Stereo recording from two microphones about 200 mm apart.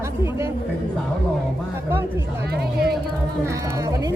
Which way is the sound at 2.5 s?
50° right (ahead or behind).